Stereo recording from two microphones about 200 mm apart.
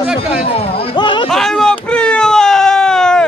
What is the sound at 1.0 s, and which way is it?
Music, 25° left (ahead or behind).